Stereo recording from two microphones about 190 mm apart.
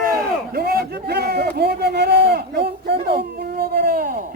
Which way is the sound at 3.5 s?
55° right (ahead or behind).